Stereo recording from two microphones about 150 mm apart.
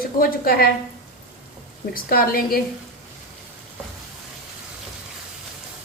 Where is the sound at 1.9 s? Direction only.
80° left.